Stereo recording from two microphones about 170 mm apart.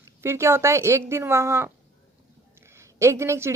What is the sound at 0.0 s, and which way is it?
Speech, 15° right (ahead or behind).